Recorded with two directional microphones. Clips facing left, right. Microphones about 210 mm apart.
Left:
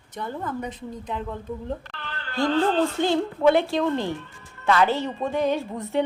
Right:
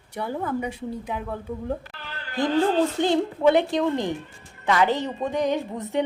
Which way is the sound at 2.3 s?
15° right (ahead or behind).